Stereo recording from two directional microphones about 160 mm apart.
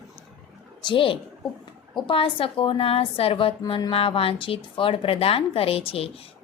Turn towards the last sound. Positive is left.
turn(degrees=35)  # may be behind; listen again after turning